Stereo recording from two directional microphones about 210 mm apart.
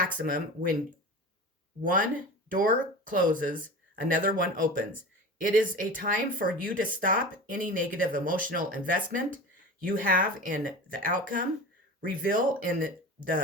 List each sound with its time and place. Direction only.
0.2 s speech: 40° right (ahead or behind)
1.8 s speech: 40° right (ahead or behind)